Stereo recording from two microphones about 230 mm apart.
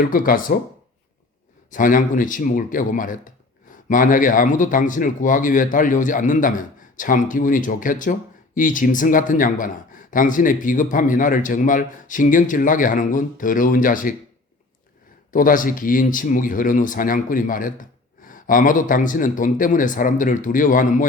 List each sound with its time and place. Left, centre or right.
0.0 s speech: left
1.7 s speech: left
15.3 s speech: left